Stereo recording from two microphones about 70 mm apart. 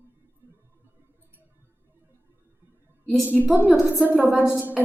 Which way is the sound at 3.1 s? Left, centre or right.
Right.